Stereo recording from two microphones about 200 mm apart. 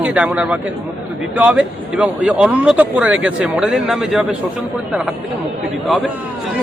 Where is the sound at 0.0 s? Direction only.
5° right (ahead or behind).